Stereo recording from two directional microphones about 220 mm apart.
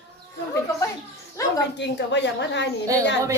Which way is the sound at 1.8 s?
50° left (ahead or behind).